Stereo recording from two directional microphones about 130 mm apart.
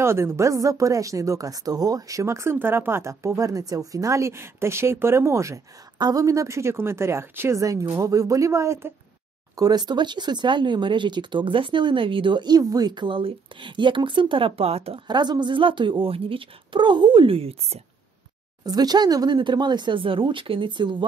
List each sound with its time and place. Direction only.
0.0 s speech: 20° right (ahead or behind)
9.6 s speech: 30° right (ahead or behind); by 15.0 s 50° right (ahead or behind)
15.0 s speech: 35° right (ahead or behind); by 17.8 s 50° right (ahead or behind)
18.7 s speech: 30° right (ahead or behind)